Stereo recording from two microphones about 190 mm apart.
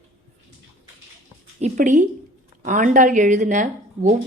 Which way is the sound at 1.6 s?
40° right (ahead or behind).